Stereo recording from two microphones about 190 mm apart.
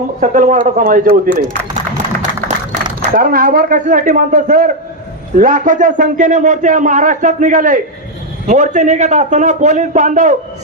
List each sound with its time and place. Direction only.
0.2 s a man's voice: 45° right (ahead or behind)
3.0 s a man's voice: 50° right (ahead or behind)